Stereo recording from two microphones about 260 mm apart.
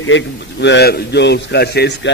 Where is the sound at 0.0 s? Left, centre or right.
Left.